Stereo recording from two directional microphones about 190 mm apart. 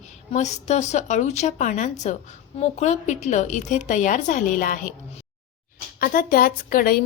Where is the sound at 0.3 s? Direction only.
35° left (ahead or behind).